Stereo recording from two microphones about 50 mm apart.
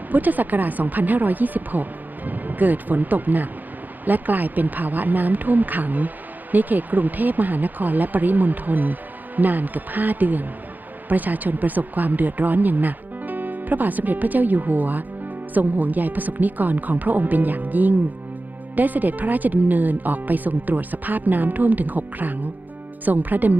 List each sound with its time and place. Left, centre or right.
0.1 s speech: right